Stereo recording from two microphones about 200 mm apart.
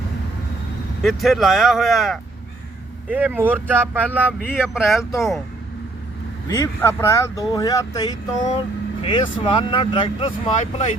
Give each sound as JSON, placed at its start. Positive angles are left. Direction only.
{"t": 1.0, "sound": "speech", "side_deg": 0}
{"t": 6.5, "sound": "speech", "side_deg": 15}
{"t": 8.4, "sound": "speech", "side_deg": 30}
{"t": 10.5, "sound": "speech", "side_deg": 35}